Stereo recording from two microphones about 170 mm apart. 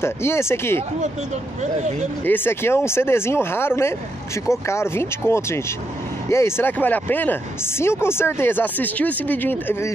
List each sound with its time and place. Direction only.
0.0 s speech: 15° left (ahead or behind)
1.6 s speech: 45° right (ahead or behind)
2.2 s speech: 10° left (ahead or behind)